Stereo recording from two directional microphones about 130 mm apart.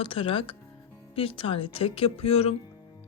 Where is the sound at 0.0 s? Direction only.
45° left (ahead or behind).